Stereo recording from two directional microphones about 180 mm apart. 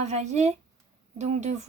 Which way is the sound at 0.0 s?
40° right (ahead or behind).